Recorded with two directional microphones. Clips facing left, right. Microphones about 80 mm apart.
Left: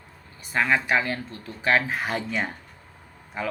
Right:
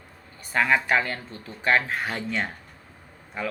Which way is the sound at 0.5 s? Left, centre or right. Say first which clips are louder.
Right 1 dB; centre.